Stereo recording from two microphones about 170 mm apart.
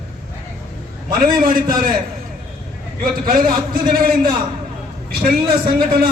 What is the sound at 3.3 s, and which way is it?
A man's voice, 55° right (ahead or behind).